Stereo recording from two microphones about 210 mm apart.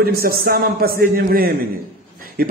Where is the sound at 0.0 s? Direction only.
45° right (ahead or behind).